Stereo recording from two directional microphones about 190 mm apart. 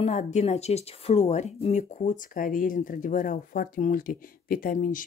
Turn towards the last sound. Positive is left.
turn(degrees=45)  # may be behind; listen again after turning